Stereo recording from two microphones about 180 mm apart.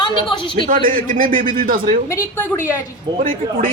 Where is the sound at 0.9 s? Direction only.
50° right (ahead or behind).